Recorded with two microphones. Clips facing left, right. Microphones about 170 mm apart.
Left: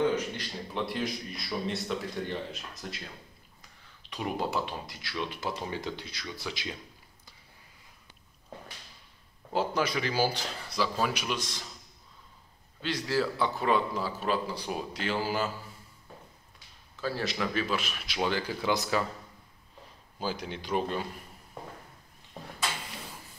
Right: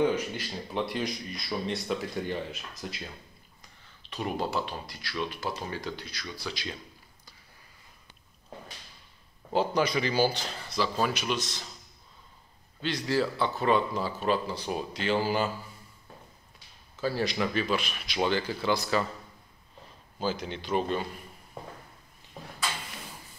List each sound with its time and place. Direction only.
0.0 s a man's voice: 10° right (ahead or behind)
4.1 s speech: 15° left (ahead or behind)
9.5 s a man's voice: 5° left (ahead or behind)
12.8 s a man's voice: 5° left (ahead or behind)
17.0 s a man's voice: centre (ahead or behind)
18.6 s speech: 15° left (ahead or behind)
20.2 s speech: 10° left (ahead or behind)